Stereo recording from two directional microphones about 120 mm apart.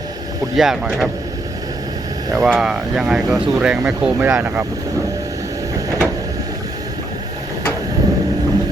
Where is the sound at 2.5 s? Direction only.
5° right (ahead or behind).